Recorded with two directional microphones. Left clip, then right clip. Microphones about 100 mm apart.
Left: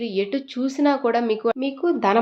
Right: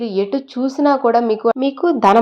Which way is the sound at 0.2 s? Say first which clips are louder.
Right 5 dB; 30° right (ahead or behind).